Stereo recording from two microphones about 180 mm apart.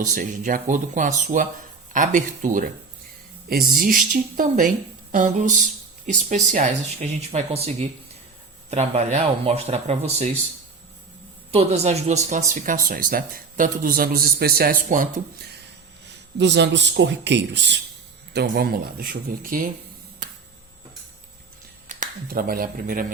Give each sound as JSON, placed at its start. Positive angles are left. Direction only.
{"t": 0.0, "sound": "speech", "side_deg": -45}
{"t": 3.7, "sound": "speech", "side_deg": -50}
{"t": 8.7, "sound": "speech", "side_deg": -35}
{"t": 11.5, "sound": "speech", "side_deg": -35}
{"t": 16.4, "sound": "speech", "side_deg": -75}
{"t": 18.3, "sound": "speech", "side_deg": -55}
{"t": 21.8, "sound": "speech", "side_deg": -50}